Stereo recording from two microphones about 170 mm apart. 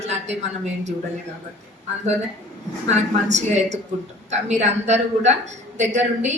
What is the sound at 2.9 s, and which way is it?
A woman's voice, 40° right (ahead or behind).